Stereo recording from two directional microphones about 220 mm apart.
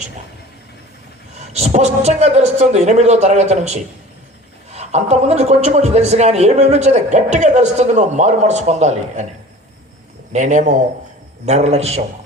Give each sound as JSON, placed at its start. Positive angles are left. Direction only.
{"t": 1.4, "sound": "a man's voice", "side_deg": -30}
{"t": 10.3, "sound": "a man's voice", "side_deg": -35}